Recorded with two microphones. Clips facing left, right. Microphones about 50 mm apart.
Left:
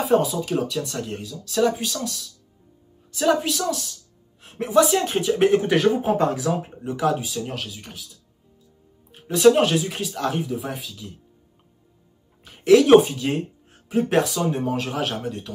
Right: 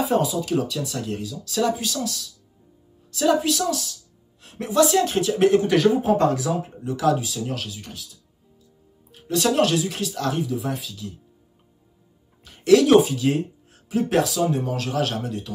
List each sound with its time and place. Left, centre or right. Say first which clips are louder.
0.0 s speech: left 2 dB; centre
3.1 s speech: right 1 dB; centre
9.1 s speech: left 6 dB; centre
12.4 s speech: left 2 dB; centre